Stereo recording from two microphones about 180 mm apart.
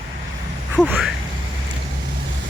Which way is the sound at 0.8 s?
5° right (ahead or behind).